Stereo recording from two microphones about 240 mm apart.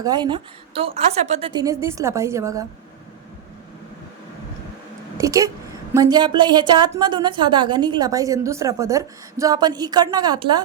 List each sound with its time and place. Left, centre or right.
0.0 s a woman's voice: centre
5.1 s a woman's voice: centre